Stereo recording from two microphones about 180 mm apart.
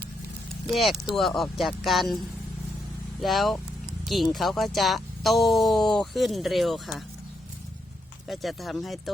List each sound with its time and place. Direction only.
0.7 s speech: centre (ahead or behind)
8.3 s speech: centre (ahead or behind)